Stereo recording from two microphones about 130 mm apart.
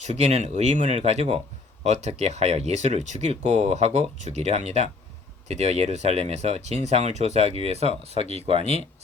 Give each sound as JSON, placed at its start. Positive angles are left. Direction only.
{"t": 0.0, "sound": "speech", "side_deg": -60}